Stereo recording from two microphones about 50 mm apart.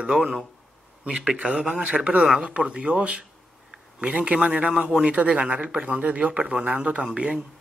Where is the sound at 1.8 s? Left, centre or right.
Right.